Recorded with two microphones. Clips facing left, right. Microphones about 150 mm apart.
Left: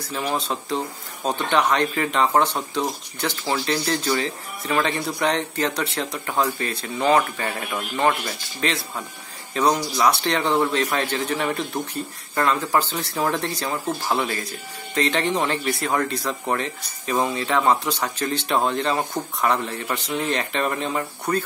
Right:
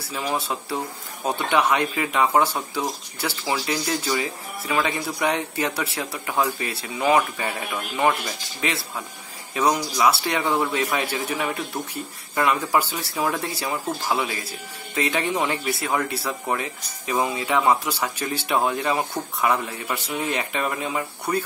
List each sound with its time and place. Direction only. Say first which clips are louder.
0.3 s speech: left 1 dB; 10° right (ahead or behind)
9.5 s speech: left 1 dB; 10° right (ahead or behind)